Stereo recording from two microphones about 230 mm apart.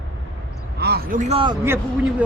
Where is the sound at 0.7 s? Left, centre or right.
Right.